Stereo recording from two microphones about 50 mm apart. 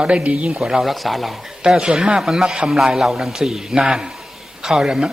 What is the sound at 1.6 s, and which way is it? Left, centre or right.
Speech, centre.